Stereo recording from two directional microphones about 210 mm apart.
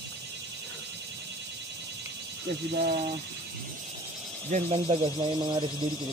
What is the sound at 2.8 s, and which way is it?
Speech, 50° right (ahead or behind).